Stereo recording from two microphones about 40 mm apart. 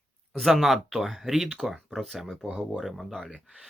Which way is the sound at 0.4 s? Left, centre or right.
Centre.